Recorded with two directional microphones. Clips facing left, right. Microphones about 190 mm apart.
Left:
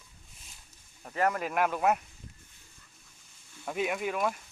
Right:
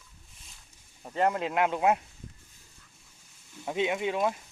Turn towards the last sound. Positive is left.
turn(degrees=-25)  # may be behind; listen again after turning